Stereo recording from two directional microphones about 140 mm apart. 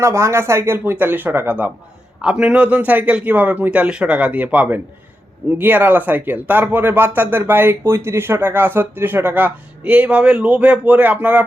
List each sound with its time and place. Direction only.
0.0 s speech: 20° right (ahead or behind)